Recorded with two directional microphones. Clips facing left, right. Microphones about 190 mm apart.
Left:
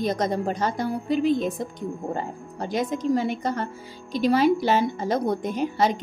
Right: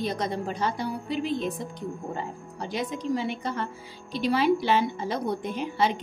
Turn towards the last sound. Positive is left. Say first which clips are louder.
# left 3 dB
turn(degrees=45)  # may be behind; listen again after turning